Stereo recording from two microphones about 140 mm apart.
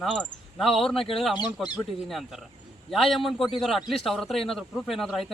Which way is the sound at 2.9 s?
Centre (ahead or behind).